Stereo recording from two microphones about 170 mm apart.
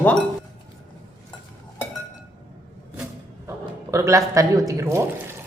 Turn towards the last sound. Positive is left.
turn(degrees=-15)  # may be behind; listen again after turning